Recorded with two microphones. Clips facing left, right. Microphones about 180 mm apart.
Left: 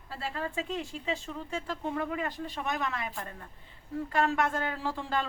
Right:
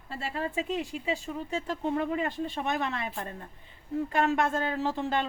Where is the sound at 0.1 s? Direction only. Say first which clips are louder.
Right 2 dB; 20° right (ahead or behind).